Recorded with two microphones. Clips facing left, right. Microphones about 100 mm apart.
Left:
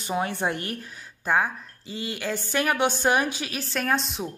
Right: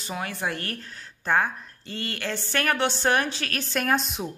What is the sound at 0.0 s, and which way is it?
Speech, 20° left (ahead or behind).